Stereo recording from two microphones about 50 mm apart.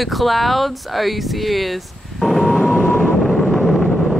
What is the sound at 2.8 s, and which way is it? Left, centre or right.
Vehicle, centre.